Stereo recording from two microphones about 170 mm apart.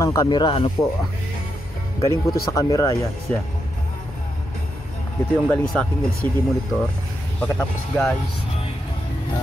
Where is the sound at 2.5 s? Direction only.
20° left (ahead or behind).